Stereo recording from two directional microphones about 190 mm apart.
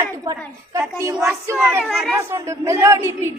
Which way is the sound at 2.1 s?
15° right (ahead or behind).